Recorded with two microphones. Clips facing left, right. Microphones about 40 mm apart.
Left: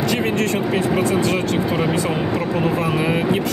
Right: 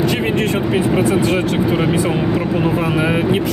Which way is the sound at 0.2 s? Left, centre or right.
Centre.